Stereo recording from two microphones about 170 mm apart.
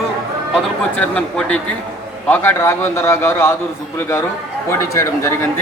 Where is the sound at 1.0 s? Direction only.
5° left (ahead or behind).